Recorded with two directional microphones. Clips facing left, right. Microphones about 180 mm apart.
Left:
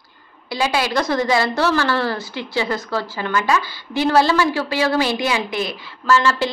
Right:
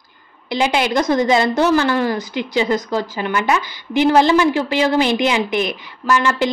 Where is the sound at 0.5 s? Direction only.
20° right (ahead or behind).